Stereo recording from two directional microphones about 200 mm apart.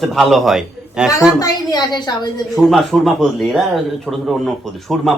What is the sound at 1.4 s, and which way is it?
Speech, 20° left (ahead or behind).